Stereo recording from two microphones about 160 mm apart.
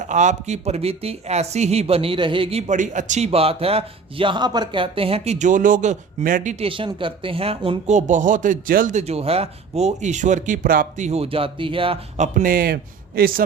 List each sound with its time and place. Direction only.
0.0 s speech: 50° right (ahead or behind)
6.7 s speech: 30° right (ahead or behind)
7.9 s speech: 50° right (ahead or behind); by 13.4 s 70° right (ahead or behind)